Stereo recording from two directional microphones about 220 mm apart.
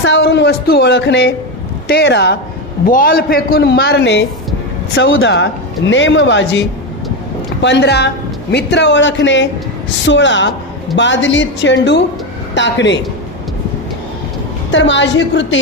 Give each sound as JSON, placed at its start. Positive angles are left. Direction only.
{"t": 0.0, "sound": "a man's voice", "side_deg": 55}
{"t": 2.8, "sound": "a man's voice", "side_deg": 40}
{"t": 14.7, "sound": "a woman's voice", "side_deg": 55}